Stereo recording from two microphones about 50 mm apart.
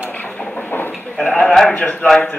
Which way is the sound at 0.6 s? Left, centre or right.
Left.